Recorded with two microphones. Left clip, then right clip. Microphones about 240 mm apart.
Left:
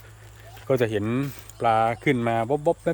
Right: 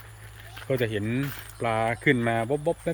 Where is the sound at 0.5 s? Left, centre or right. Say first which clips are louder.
Left 4 dB; centre.